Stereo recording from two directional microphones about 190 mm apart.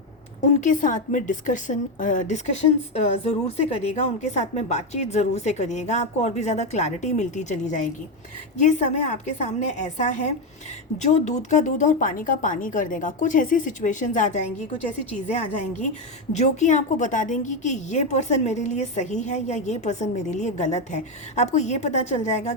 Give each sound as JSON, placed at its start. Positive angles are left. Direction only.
{"t": 0.6, "sound": "a woman's voice", "side_deg": 40}